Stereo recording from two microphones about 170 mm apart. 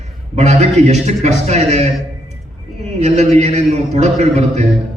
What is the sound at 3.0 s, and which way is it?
A man's voice, 40° right (ahead or behind).